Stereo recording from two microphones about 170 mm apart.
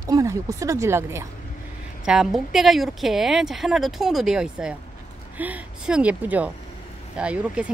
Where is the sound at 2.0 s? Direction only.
5° right (ahead or behind).